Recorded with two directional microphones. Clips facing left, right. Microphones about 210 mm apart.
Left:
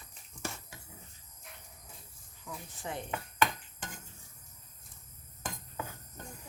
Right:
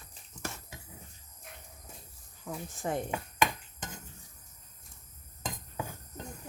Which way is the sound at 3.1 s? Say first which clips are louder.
Right 1 dB; 15° right (ahead or behind).